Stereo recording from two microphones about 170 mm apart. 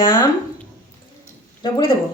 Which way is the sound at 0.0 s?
25° left (ahead or behind).